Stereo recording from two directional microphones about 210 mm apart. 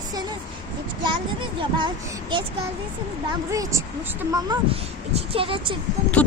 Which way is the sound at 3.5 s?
15° right (ahead or behind).